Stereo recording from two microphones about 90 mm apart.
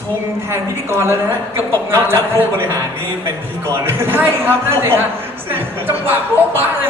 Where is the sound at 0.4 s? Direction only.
30° right (ahead or behind).